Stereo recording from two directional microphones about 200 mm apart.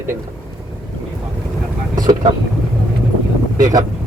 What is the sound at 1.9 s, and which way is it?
Vehicle, 20° right (ahead or behind).